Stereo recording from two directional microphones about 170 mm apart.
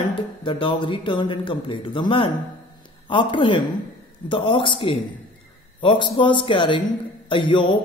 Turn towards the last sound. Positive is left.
turn(degrees=30)  # may be behind; listen again after turning